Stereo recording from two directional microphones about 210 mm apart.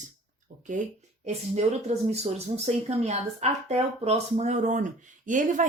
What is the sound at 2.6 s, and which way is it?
Speech, 30° right (ahead or behind).